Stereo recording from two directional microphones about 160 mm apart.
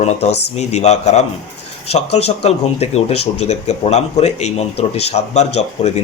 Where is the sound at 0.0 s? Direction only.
45° left (ahead or behind).